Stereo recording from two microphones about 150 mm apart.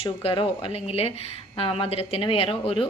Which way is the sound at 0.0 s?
40° left (ahead or behind).